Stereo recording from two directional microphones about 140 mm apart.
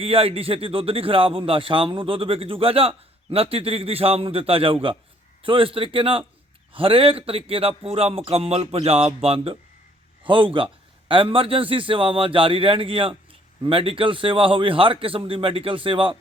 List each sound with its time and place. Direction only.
0.0 s speech: 40° right (ahead or behind)